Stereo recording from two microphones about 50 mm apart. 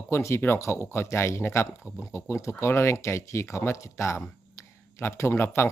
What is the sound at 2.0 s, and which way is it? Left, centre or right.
Speech, left.